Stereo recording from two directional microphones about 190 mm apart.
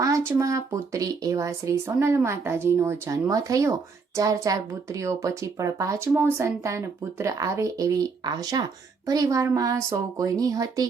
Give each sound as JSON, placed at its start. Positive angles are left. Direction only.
{"t": 0.0, "sound": "a woman's voice", "side_deg": -15}